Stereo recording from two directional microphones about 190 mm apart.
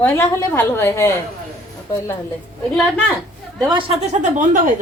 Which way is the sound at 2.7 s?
5° left (ahead or behind).